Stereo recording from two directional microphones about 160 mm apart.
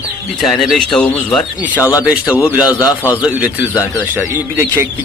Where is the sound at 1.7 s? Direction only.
20° left (ahead or behind).